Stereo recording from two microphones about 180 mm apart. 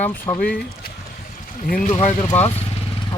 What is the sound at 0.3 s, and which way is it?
Speech, 20° left (ahead or behind).